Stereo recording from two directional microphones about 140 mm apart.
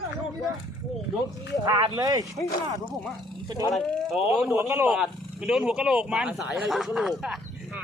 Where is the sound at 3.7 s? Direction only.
Centre (ahead or behind).